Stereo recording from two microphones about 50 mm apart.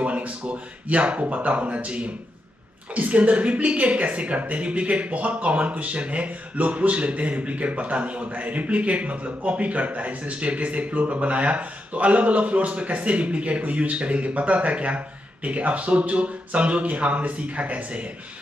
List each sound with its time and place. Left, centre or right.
0.0 s speech: right